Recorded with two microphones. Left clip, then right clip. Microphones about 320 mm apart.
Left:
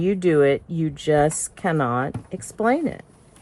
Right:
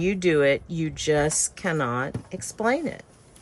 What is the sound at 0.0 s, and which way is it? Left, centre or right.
Speech, centre.